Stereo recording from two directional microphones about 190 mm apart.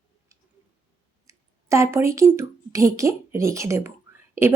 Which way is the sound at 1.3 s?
15° right (ahead or behind).